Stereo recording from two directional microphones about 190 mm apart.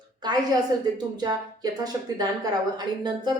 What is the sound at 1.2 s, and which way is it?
A woman's voice, 20° right (ahead or behind).